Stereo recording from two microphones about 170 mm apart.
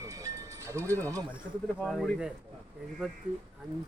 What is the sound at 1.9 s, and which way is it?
Speech, 5° right (ahead or behind).